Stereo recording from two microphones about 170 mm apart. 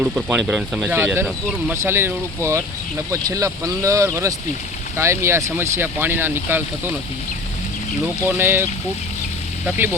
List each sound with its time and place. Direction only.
0.0 s speech: 5° right (ahead or behind)
8.4 s speech: 15° right (ahead or behind)
9.6 s speech: 10° right (ahead or behind)